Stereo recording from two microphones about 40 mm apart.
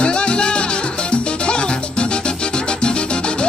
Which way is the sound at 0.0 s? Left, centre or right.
Left.